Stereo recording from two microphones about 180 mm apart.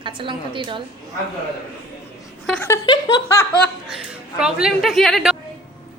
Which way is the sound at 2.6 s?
20° left (ahead or behind).